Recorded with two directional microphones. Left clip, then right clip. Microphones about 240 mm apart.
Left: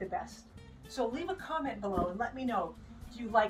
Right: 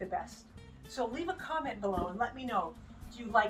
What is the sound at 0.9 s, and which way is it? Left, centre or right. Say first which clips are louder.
Speech: left 1 dB; centre.